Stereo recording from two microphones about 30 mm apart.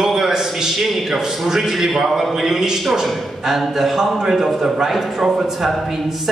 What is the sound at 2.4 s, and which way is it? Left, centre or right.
A man's voice, centre.